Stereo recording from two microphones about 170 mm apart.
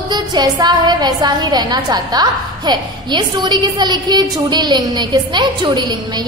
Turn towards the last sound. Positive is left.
turn(degrees=-25)  # may be behind; listen again after turning